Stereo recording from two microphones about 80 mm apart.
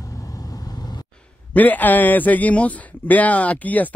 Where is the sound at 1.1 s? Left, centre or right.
Centre.